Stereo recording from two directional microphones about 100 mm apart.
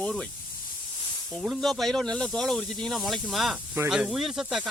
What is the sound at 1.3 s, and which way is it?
Speech, centre (ahead or behind).